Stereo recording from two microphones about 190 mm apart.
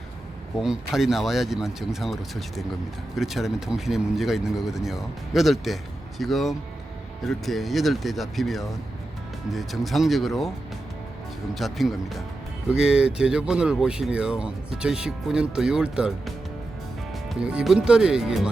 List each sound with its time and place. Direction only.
0.6 s speech: 5° right (ahead or behind)
11.5 s speech: centre (ahead or behind)